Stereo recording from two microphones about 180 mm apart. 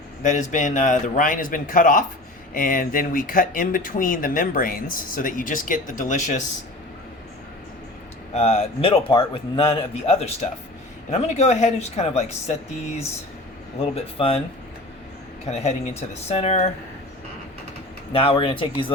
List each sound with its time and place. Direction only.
0.2 s speech: 45° left (ahead or behind)
8.3 s a man's voice: 35° left (ahead or behind)
15.4 s a man's voice: 40° left (ahead or behind)
18.1 s a man's voice: 30° left (ahead or behind)